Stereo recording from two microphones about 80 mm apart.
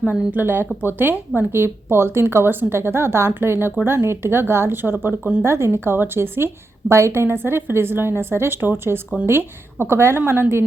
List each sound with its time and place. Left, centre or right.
0.1 s a woman's voice: right